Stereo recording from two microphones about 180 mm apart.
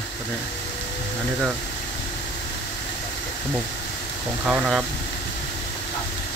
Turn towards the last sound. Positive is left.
turn(degrees=-5)  # may be behind; listen again after turning